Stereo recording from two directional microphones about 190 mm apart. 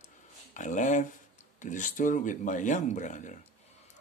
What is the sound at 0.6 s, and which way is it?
Speech, 40° left (ahead or behind).